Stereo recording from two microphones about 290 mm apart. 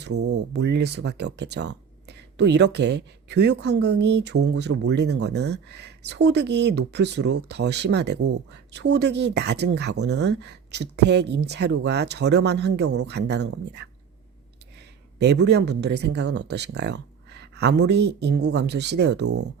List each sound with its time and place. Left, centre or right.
0.0 s speech: right
15.2 s speech: right